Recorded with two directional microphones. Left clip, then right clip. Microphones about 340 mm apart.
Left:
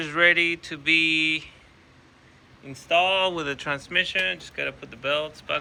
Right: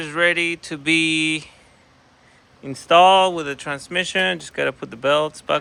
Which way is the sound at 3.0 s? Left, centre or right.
Centre.